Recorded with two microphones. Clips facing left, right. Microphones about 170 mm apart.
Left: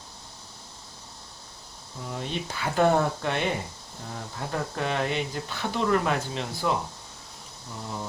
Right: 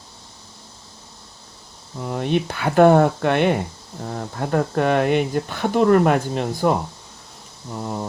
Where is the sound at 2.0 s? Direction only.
60° right (ahead or behind).